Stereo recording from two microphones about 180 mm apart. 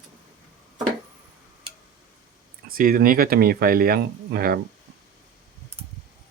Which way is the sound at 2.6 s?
55° right (ahead or behind).